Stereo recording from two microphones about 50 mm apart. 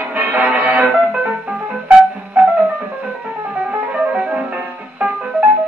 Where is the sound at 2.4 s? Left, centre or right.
Right.